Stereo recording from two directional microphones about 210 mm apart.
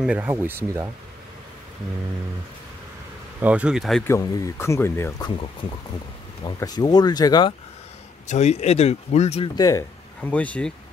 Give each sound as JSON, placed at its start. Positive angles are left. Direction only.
{"t": 0.0, "sound": "speech", "side_deg": -5}
{"t": 3.3, "sound": "speech", "side_deg": -5}
{"t": 4.1, "sound": "speech", "side_deg": 15}
{"t": 6.4, "sound": "speech", "side_deg": 20}
{"t": 8.3, "sound": "speech", "side_deg": 30}
{"t": 9.6, "sound": "speech", "side_deg": 15}